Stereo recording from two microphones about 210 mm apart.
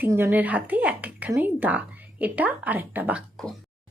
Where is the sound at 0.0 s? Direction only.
10° right (ahead or behind).